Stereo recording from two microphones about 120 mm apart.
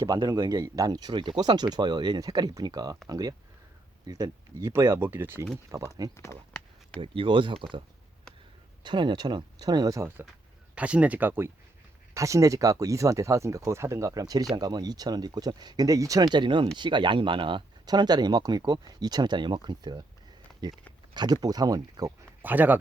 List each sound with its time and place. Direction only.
0.0 s speech: 35° right (ahead or behind)
4.7 s speech: 20° right (ahead or behind)
7.0 s speech: 45° right (ahead or behind)
8.8 s speech: 40° right (ahead or behind)
10.8 s speech: 10° right (ahead or behind); by 20.8 s 35° right (ahead or behind)
21.1 s a sound: 35° right (ahead or behind)
21.4 s speech: 35° right (ahead or behind)
22.4 s speech: 15° right (ahead or behind)